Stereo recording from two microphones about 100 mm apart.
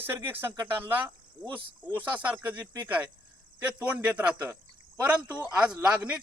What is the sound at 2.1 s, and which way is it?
A man's voice, 15° right (ahead or behind).